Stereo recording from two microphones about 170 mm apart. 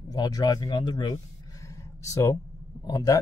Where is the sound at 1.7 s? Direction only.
20° left (ahead or behind).